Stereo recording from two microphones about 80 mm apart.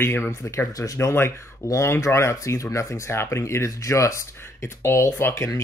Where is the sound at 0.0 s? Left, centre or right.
Left.